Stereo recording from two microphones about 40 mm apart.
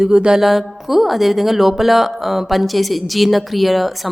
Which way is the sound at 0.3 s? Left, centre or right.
Centre.